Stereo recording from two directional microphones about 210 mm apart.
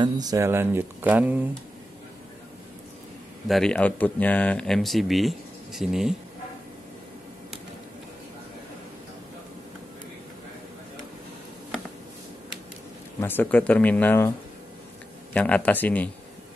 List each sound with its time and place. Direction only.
0.0 s speech: 20° right (ahead or behind)
3.4 s speech: centre (ahead or behind)
13.2 s speech: 10° left (ahead or behind)
15.3 s speech: 5° left (ahead or behind)